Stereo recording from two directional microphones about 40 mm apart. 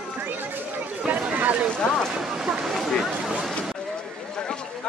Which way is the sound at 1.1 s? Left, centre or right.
Right.